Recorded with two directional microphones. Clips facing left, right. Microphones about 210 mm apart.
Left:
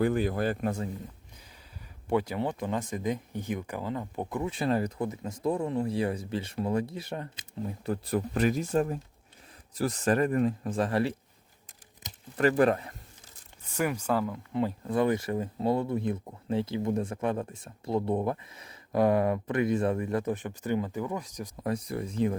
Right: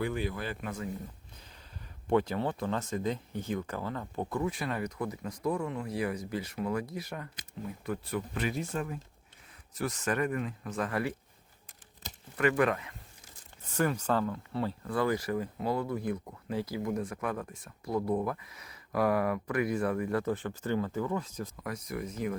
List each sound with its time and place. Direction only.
0.0 s speech: 45° left (ahead or behind)
2.0 s speech: 10° left (ahead or behind); by 7.4 s 30° left (ahead or behind)
7.9 s speech: 40° left (ahead or behind)
12.4 s speech: 35° left (ahead or behind)
13.7 s speech: 10° left (ahead or behind)
21.5 s speech: 30° left (ahead or behind)